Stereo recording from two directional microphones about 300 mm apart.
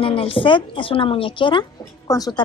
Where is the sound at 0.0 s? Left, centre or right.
Centre.